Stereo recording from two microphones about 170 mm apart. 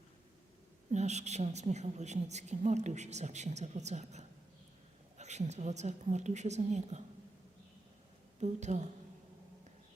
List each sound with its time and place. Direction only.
0.9 s a woman's voice: 40° right (ahead or behind)
8.4 s a woman's voice: 45° right (ahead or behind)